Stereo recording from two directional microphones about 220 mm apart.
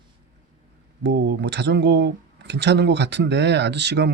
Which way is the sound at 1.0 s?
50° right (ahead or behind).